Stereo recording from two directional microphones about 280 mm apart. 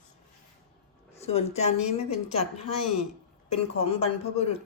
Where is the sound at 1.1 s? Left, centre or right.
Left.